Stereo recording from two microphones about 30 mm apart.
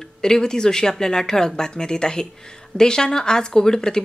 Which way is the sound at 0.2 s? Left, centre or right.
Left.